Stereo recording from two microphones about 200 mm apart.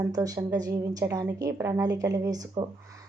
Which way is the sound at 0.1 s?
20° right (ahead or behind).